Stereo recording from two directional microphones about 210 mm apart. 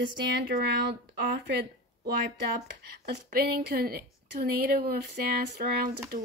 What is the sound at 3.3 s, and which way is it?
Speech, 45° right (ahead or behind).